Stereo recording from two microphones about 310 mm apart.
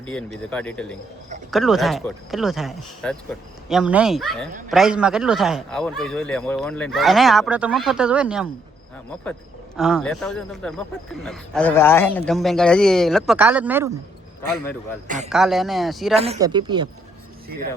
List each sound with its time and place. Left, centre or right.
0.0 s speech: centre
9.7 s speech: centre
15.0 s a man's voice: right
15.3 s speech: centre
16.2 s speech: centre